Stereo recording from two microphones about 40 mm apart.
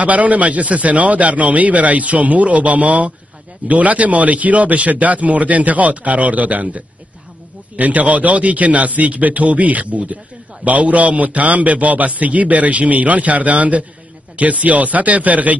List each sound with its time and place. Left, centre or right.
0.0 s a man's voice: right